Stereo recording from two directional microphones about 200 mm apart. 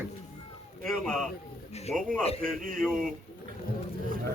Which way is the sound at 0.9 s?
5° left (ahead or behind).